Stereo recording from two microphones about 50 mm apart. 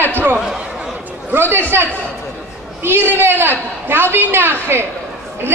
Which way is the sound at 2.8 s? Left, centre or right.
Right.